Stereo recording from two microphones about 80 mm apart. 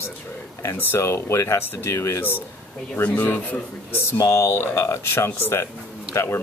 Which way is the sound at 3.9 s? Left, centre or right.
Left.